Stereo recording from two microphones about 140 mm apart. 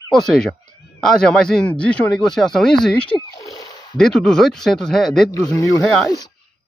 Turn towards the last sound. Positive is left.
turn(degrees=0)  # may be behind; listen again after turning